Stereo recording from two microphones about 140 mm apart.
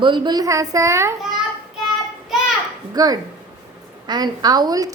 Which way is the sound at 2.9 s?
25° right (ahead or behind).